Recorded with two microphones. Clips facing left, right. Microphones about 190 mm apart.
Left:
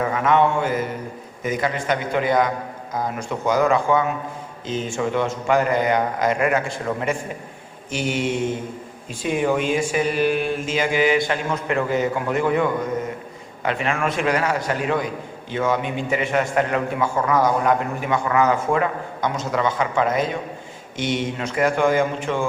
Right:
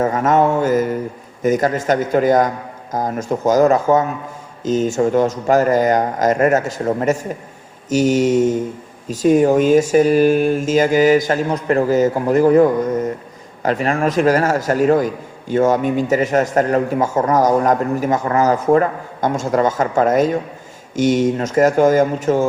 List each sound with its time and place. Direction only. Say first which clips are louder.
0.0 s a man's voice: right 4 dB; 45° right (ahead or behind)